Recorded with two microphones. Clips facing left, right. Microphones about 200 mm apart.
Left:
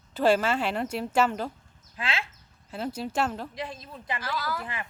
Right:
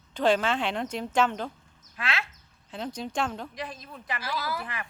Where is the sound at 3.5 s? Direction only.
25° left (ahead or behind).